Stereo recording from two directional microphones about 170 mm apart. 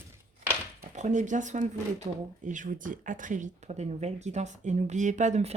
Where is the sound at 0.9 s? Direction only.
45° right (ahead or behind).